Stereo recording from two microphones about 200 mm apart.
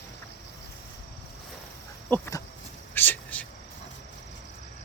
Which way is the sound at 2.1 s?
15° left (ahead or behind).